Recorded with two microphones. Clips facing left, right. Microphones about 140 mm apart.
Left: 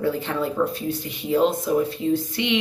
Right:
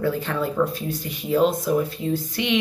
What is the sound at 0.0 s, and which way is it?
Speech, 25° left (ahead or behind).